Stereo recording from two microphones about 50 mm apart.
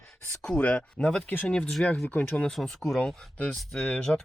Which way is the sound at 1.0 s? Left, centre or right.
Centre.